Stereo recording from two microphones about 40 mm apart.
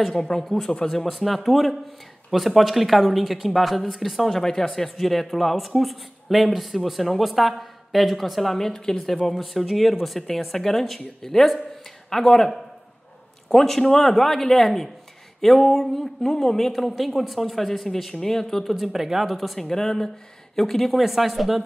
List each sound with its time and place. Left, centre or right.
0.1 s speech: centre
0.7 s speech: centre
1.0 s speech: centre
4.4 s speech: centre
13.5 s speech: centre
18.8 s speech: centre
19.6 s speech: centre